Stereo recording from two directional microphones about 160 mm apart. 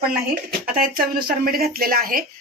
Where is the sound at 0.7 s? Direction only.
65° right (ahead or behind).